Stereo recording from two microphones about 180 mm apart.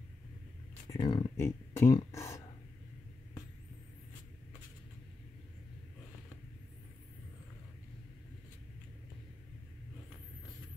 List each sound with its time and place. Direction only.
0.8 s speech: 25° left (ahead or behind)